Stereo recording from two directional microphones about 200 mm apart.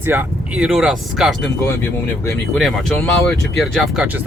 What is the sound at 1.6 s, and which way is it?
Speech, 15° left (ahead or behind).